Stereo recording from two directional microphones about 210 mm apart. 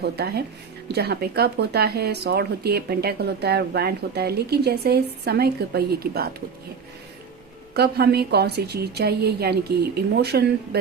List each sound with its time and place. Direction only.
0.0 s speech: 50° right (ahead or behind)
7.7 s speech: 50° right (ahead or behind)